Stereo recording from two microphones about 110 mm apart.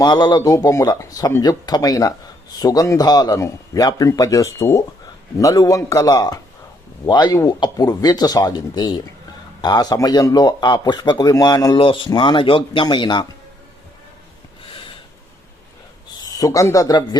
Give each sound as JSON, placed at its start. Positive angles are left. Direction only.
{"t": 0.0, "sound": "a man's voice", "side_deg": 40}
{"t": 11.8, "sound": "speech", "side_deg": 50}
{"t": 14.7, "sound": "snort", "side_deg": 55}
{"t": 16.2, "sound": "speech", "side_deg": 35}